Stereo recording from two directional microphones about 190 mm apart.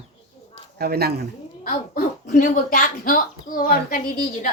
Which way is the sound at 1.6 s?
45° left (ahead or behind).